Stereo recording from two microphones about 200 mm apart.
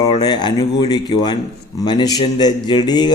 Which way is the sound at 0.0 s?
20° left (ahead or behind).